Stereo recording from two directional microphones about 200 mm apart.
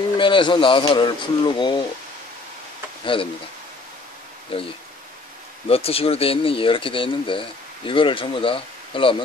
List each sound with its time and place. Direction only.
0.2 s speech: 25° left (ahead or behind)
3.1 s speech: 25° left (ahead or behind)
4.5 s speech: 30° left (ahead or behind)